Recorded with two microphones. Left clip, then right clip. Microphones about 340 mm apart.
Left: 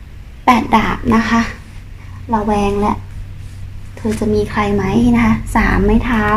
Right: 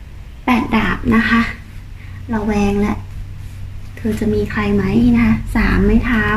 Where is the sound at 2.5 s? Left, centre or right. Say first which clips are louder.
Left 1 dB; centre.